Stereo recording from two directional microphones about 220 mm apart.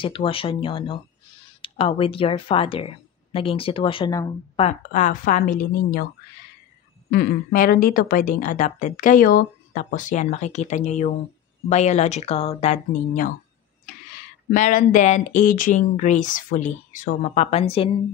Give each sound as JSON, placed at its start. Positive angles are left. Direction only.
{"t": 0.0, "sound": "speech", "side_deg": 25}
{"t": 4.6, "sound": "a woman's voice", "side_deg": 35}
{"t": 7.1, "sound": "a woman's voice", "side_deg": 45}
{"t": 14.5, "sound": "a woman's voice", "side_deg": 35}